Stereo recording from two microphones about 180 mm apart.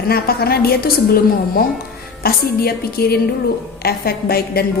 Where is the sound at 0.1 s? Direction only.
60° left (ahead or behind).